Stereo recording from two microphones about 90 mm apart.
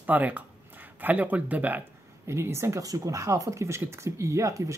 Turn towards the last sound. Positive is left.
turn(degrees=-35)  # may be behind; listen again after turning